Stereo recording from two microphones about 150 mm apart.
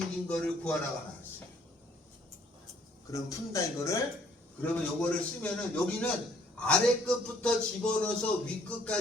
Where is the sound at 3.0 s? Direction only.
20° left (ahead or behind).